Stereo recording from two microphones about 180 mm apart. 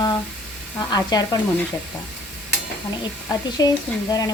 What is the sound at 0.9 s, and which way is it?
Speech, 20° left (ahead or behind).